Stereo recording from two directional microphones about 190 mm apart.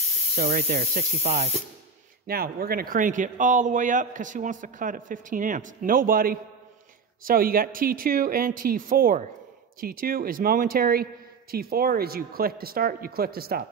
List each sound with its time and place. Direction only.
0.4 s speech: 50° right (ahead or behind)
0.9 s speech: 35° right (ahead or behind)
2.2 s speech: 50° right (ahead or behind)